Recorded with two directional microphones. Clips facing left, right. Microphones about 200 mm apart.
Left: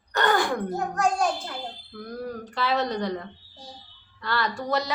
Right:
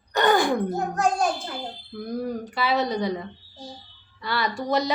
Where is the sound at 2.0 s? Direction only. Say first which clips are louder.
Right 5 dB; 15° right (ahead or behind).